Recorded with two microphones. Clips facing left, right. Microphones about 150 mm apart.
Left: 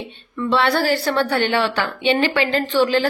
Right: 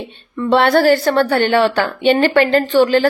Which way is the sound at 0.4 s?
50° right (ahead or behind).